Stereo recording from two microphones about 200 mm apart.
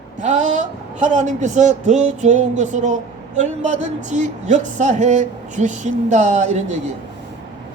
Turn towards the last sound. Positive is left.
turn(degrees=-35)  # may be behind; listen again after turning